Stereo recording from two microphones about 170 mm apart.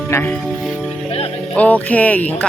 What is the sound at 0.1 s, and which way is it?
Speech, 10° left (ahead or behind).